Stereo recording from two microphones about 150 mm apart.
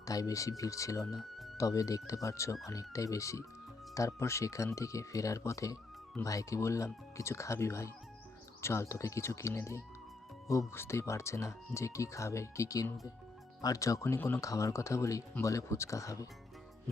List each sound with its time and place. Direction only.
0.0 s speech: 25° left (ahead or behind)